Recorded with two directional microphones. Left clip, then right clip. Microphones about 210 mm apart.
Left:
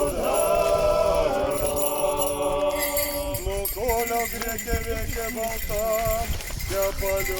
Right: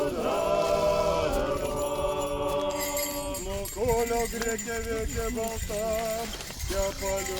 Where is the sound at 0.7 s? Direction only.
30° right (ahead or behind).